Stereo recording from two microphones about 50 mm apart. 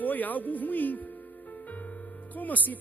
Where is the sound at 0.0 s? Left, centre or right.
Left.